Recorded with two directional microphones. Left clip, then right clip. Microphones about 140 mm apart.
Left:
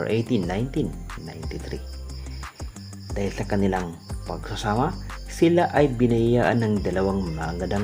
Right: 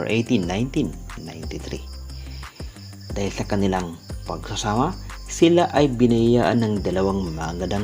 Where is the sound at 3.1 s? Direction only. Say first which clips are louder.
Right 1 dB; 35° right (ahead or behind).